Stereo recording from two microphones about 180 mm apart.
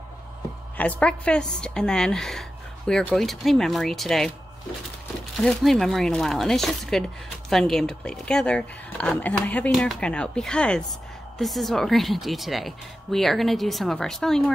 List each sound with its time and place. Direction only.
0.7 s speech: 10° left (ahead or behind)
5.4 s speech: centre (ahead or behind)